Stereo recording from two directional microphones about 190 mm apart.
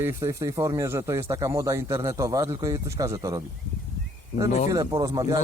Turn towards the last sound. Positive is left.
turn(degrees=-20)  # may be behind; listen again after turning